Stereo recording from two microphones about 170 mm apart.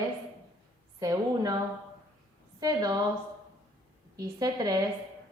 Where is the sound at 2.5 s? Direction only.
20° right (ahead or behind).